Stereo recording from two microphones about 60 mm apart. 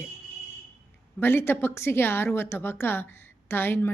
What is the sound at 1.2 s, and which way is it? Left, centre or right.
A woman's voice, left.